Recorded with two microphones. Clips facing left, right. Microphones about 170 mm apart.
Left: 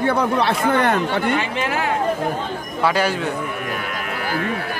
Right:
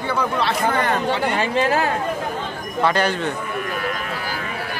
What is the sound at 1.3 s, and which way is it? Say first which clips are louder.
Speech: right 2 dB; 40° right (ahead or behind).